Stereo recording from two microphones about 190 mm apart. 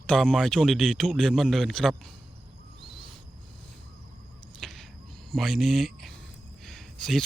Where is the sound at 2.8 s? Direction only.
Centre (ahead or behind).